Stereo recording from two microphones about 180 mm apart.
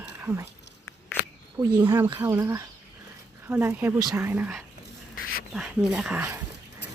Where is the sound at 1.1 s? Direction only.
10° left (ahead or behind).